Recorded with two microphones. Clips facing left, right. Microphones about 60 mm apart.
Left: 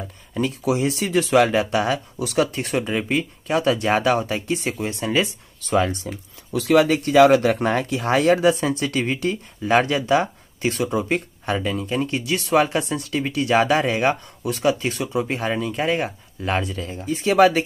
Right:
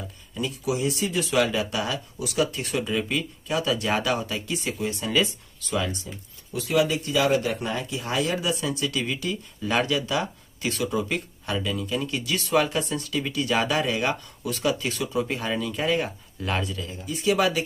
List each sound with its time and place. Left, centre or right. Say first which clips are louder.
0.3 s speech: left 6 dB; left
5.9 s speech: left 5 dB; left
6.8 s speech: left 8 dB; left